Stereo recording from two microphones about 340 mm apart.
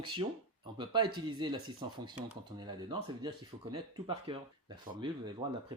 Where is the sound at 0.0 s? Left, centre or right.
Centre.